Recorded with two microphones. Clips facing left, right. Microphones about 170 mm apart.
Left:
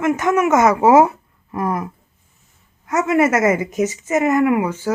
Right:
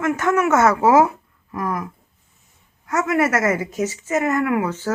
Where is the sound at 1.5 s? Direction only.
25° left (ahead or behind).